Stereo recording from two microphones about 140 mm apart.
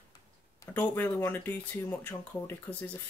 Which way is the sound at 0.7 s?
15° left (ahead or behind).